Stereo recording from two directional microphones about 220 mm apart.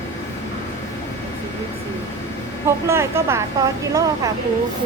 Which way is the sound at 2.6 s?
10° right (ahead or behind).